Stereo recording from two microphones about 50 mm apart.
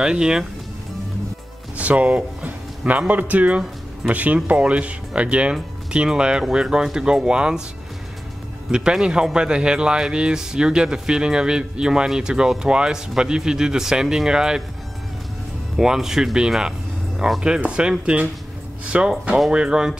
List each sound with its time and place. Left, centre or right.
0.0 s speech: centre
1.8 s speech: right
3.1 s speech: right
8.7 s speech: centre
15.7 s speech: centre